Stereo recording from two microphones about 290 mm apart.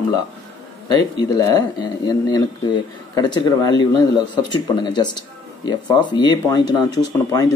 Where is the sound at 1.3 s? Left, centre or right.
Centre.